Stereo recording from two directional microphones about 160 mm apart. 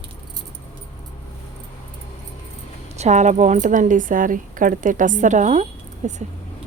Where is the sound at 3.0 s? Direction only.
45° right (ahead or behind).